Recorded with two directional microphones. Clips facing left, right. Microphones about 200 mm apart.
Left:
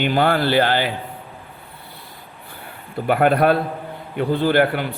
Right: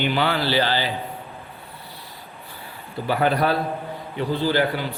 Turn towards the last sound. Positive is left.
turn(degrees=55)  # may be behind; listen again after turning